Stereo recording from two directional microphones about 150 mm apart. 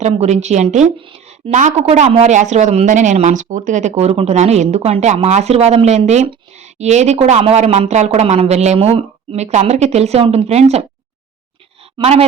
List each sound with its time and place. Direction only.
0.0 s speech: 50° right (ahead or behind)
11.9 s speech: 40° right (ahead or behind)